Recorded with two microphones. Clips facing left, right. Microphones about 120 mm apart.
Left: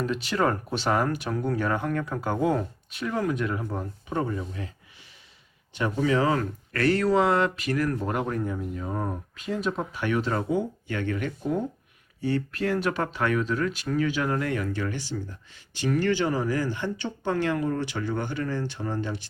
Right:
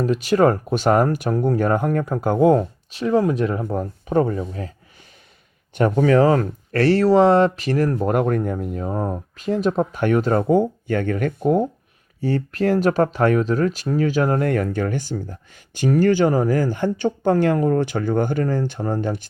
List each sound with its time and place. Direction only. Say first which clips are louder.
0.0 s speech: right 9 dB; 45° right (ahead or behind)
5.7 s speech: right 9 dB; 50° right (ahead or behind)
8.9 s speech: right 6 dB; 35° right (ahead or behind); by 11.6 s 55° right (ahead or behind)
12.2 s speech: right 6 dB; 40° right (ahead or behind)